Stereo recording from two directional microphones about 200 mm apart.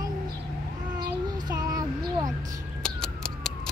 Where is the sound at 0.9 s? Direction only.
20° right (ahead or behind).